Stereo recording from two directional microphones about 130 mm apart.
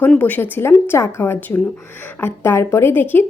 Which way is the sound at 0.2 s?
15° left (ahead or behind).